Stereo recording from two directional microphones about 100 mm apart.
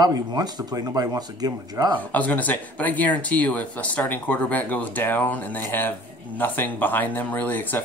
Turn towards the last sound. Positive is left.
turn(degrees=20)  # may be behind; listen again after turning